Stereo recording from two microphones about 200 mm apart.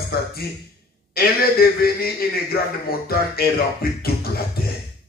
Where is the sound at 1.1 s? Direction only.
50° left (ahead or behind).